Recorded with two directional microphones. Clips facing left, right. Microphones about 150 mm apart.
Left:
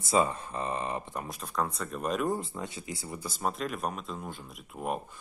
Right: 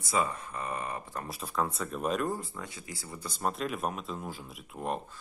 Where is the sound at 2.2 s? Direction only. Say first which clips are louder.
Left 3 dB; 20° left (ahead or behind).